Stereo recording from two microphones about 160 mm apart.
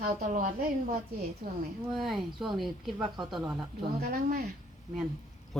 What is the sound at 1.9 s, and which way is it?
Speech, centre (ahead or behind).